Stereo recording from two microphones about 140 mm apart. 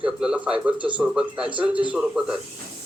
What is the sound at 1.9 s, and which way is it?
Speech, 5° right (ahead or behind).